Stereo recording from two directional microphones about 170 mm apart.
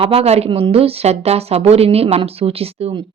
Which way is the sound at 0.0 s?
35° right (ahead or behind).